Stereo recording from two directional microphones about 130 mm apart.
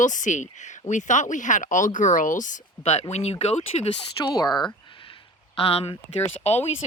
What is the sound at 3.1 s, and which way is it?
Speech, 55° left (ahead or behind).